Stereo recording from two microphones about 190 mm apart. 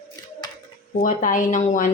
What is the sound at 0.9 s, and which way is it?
Speech, 45° left (ahead or behind).